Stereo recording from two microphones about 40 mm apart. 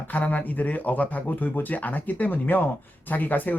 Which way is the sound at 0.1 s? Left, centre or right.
Left.